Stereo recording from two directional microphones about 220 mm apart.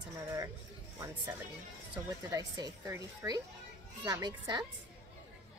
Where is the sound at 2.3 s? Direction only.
15° right (ahead or behind).